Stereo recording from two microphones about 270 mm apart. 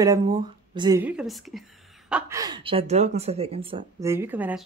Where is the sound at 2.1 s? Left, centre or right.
Centre.